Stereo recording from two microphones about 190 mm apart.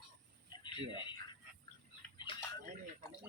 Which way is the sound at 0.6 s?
25° left (ahead or behind).